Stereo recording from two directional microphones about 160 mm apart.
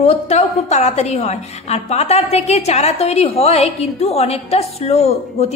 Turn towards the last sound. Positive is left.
turn(degrees=40)  # may be behind; listen again after turning